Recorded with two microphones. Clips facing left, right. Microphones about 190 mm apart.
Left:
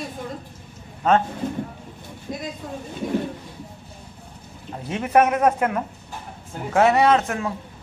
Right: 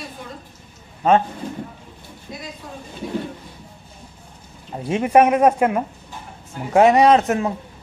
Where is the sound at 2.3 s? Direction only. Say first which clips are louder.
Left 4 dB; 45° left (ahead or behind).